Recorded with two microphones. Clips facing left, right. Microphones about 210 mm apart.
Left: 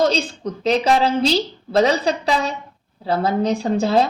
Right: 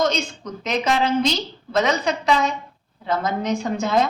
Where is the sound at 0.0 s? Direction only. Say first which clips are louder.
Left 3 dB; 35° left (ahead or behind).